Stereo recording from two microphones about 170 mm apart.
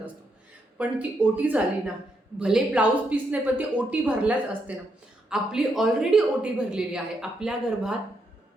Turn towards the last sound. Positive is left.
turn(degrees=-5)  # may be behind; listen again after turning